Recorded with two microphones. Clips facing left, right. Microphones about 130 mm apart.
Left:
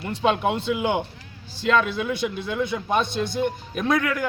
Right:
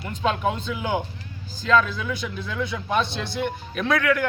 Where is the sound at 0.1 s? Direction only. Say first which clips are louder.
Left 2 dB; 70° left (ahead or behind); by 3.4 s 45° left (ahead or behind).